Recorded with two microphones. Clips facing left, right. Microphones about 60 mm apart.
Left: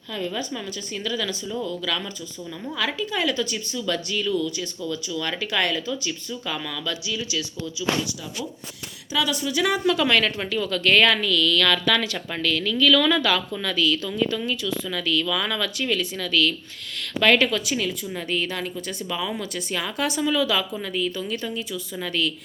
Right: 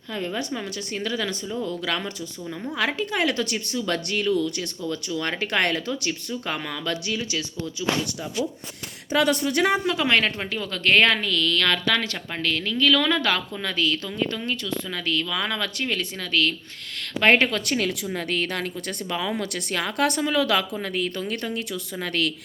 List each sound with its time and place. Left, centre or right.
0.1 s speech: right
0.9 s speech: right
3.8 s speech: right
9.1 s speech: right
9.7 s speech: right
17.5 s a woman's voice: right